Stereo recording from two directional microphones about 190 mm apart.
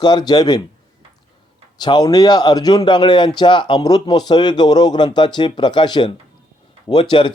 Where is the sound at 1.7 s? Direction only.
20° left (ahead or behind).